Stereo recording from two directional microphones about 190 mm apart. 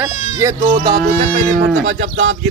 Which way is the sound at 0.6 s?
50° right (ahead or behind).